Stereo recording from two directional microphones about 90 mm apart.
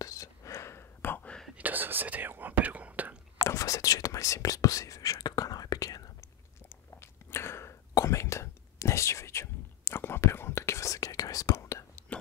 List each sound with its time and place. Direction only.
0.0 s whispering: 40° left (ahead or behind); by 1.4 s 15° left (ahead or behind)
1.6 s whispering: 20° right (ahead or behind)
3.4 s whispering: 35° left (ahead or behind)
6.7 s whispering: 30° left (ahead or behind)